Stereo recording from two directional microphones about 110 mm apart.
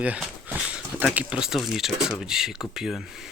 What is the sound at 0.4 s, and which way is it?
Speech, 10° right (ahead or behind).